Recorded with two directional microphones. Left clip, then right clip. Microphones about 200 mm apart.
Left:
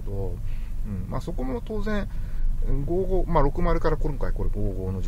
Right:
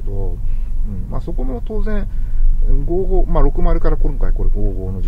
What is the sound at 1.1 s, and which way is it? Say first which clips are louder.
Speech: right 4 dB; 10° left (ahead or behind).